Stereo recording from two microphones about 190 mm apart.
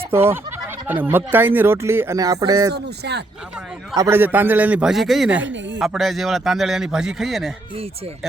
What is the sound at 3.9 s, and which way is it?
Speech, 15° right (ahead or behind).